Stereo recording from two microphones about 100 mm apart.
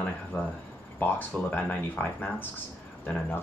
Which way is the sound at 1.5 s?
20° left (ahead or behind).